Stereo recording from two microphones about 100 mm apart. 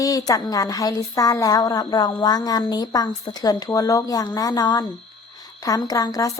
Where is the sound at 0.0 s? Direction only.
35° left (ahead or behind).